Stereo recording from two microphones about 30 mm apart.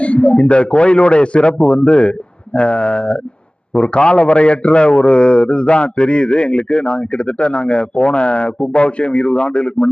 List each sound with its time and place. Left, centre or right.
0.0 s a man's voice: left